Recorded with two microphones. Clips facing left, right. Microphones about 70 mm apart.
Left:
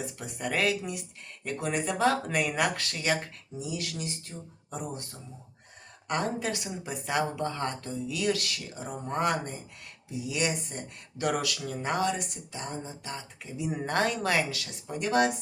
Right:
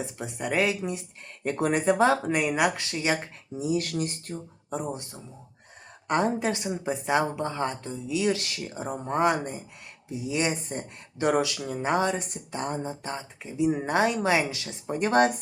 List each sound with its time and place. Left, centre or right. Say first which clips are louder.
0.0 s speech: right 3 dB; centre
1.5 s speech: right 7 dB; right
3.6 s speech: right 8 dB; right
4.7 s speech: right 5 dB; right
9.1 s speech: right 4 dB; right
13.1 s speech: right 4 dB; right